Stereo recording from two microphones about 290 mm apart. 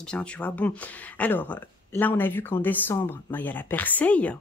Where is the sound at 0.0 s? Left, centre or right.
Centre.